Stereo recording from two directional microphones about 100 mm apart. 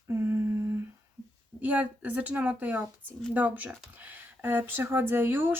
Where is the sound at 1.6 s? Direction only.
15° right (ahead or behind).